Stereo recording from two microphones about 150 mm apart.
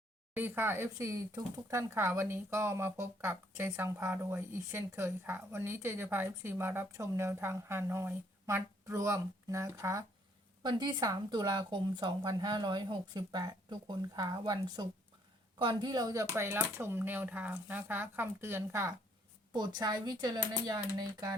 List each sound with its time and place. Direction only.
0.3 s speech: 15° right (ahead or behind)